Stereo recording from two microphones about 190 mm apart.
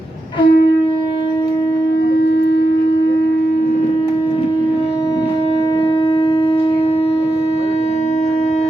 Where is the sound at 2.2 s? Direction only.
65° left (ahead or behind).